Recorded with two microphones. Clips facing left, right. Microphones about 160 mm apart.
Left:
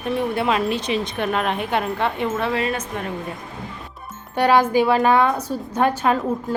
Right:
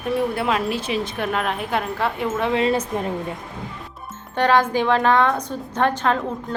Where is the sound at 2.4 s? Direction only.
25° right (ahead or behind).